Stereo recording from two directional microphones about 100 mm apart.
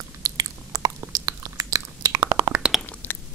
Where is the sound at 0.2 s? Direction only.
35° right (ahead or behind).